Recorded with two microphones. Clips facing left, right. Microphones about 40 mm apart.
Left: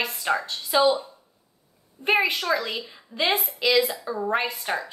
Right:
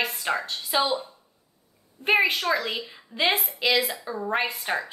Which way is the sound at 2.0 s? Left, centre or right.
Centre.